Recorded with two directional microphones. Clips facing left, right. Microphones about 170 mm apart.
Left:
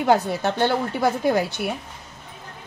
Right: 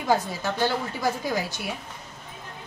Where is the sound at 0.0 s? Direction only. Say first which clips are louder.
Left 5 dB; 65° left (ahead or behind).